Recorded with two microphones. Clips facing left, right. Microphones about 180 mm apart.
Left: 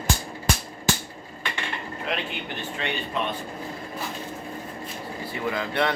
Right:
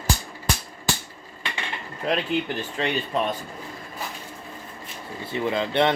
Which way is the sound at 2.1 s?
40° right (ahead or behind).